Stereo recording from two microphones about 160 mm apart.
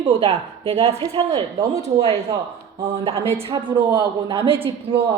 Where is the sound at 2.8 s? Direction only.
35° right (ahead or behind).